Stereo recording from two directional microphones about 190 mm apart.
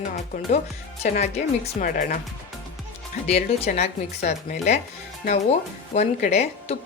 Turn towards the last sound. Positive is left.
turn(degrees=35)  # may be behind; listen again after turning